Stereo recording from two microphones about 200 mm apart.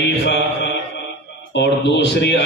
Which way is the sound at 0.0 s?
60° left (ahead or behind).